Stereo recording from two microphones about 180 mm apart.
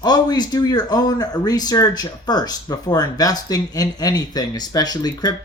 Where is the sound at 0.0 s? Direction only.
20° left (ahead or behind).